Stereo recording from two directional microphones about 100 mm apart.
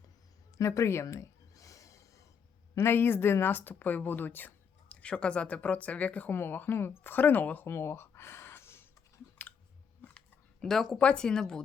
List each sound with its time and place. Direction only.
0.5 s a sound: 30° left (ahead or behind)
2.7 s speech: 25° left (ahead or behind)
10.0 s speech: 10° left (ahead or behind)